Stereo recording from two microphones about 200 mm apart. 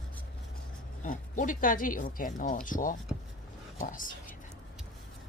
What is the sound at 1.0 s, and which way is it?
Speech, 40° left (ahead or behind).